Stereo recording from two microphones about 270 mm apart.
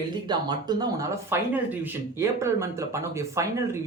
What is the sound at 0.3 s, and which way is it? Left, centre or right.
A man's voice, centre.